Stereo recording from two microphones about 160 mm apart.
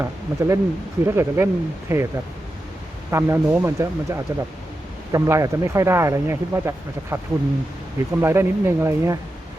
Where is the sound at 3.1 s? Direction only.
15° right (ahead or behind).